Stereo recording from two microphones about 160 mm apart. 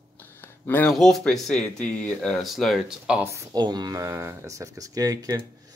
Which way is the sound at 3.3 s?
25° right (ahead or behind).